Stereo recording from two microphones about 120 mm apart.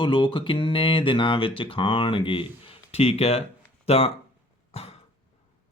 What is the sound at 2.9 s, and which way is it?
Speech, 55° left (ahead or behind).